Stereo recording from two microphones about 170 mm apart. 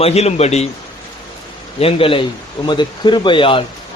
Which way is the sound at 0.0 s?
40° left (ahead or behind).